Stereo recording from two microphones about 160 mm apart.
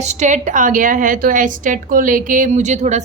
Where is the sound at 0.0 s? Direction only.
45° right (ahead or behind).